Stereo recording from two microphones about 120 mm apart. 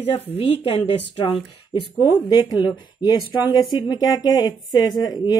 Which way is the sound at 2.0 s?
35° left (ahead or behind).